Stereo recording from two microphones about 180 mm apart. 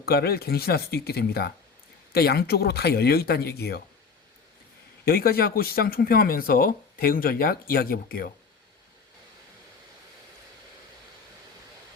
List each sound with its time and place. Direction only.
0.0 s speech: 60° left (ahead or behind)
5.0 s speech: 55° left (ahead or behind)